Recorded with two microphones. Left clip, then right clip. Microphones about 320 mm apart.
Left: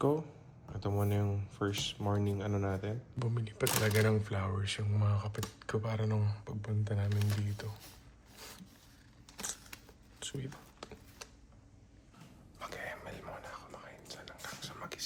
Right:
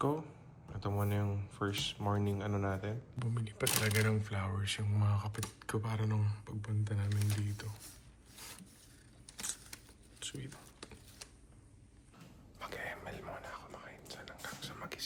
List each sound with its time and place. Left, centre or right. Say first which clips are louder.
0.0 s speech: left 3 dB; centre
10.2 s a sound: left 2 dB; centre
12.5 s whispering: even; centre